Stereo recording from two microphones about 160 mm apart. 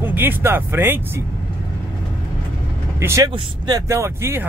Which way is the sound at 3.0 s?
15° right (ahead or behind).